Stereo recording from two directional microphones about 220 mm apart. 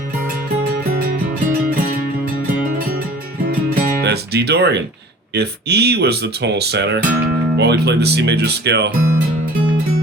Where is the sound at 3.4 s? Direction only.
40° right (ahead or behind).